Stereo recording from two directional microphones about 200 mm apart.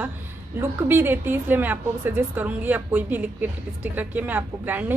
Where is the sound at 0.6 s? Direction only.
10° right (ahead or behind).